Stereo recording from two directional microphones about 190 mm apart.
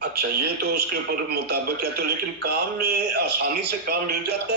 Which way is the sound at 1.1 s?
55° right (ahead or behind).